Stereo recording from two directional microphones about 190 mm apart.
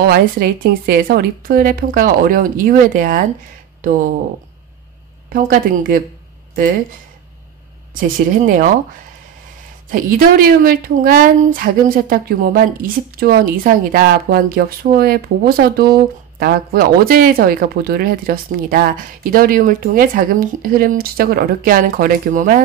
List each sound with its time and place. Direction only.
0.0 s speech: 55° right (ahead or behind)
5.3 s speech: 50° right (ahead or behind)
7.9 s speech: 45° right (ahead or behind)
9.8 s speech: 50° right (ahead or behind)